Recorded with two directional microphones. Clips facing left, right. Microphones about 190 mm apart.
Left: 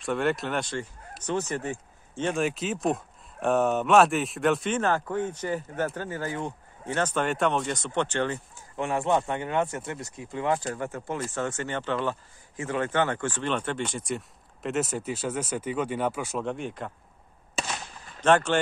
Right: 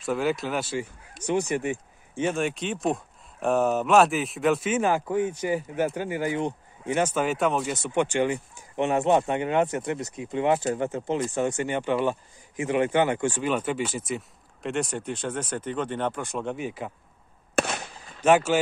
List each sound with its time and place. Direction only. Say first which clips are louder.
0.0 s speech: right 1 dB; centre (ahead or behind)
2.4 s speech: even; centre (ahead or behind)
18.2 s speech: right 2 dB; 5° right (ahead or behind)